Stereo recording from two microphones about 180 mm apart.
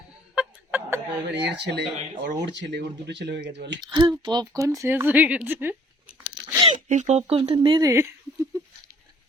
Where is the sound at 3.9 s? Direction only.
25° right (ahead or behind).